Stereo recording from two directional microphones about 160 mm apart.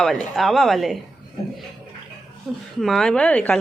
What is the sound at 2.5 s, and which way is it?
A woman's voice, centre (ahead or behind).